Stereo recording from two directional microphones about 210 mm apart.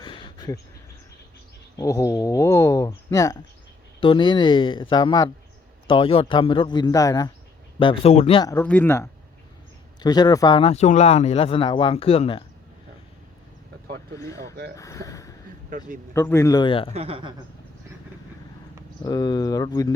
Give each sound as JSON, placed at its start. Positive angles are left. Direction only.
{"t": 0.0, "sound": "a sound", "side_deg": 25}
{"t": 1.7, "sound": "speech", "side_deg": 15}
{"t": 14.2, "sound": "speech", "side_deg": 15}
{"t": 16.9, "sound": "speech", "side_deg": -25}
{"t": 19.0, "sound": "speech", "side_deg": 20}